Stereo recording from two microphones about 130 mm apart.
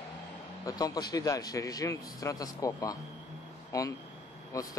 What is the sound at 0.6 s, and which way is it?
Speech, 30° left (ahead or behind).